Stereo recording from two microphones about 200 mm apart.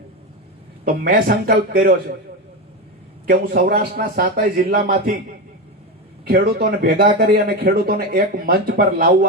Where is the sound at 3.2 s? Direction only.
45° right (ahead or behind).